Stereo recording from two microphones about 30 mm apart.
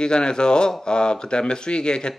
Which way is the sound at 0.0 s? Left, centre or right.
Left.